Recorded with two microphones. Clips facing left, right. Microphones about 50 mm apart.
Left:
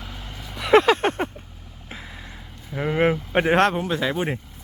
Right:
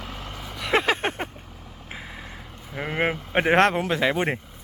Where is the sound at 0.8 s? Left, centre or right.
Centre.